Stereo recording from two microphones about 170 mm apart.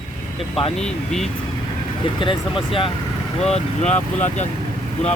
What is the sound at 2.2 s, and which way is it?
Speech, 30° left (ahead or behind).